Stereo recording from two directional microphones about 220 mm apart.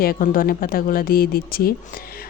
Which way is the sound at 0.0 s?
40° left (ahead or behind).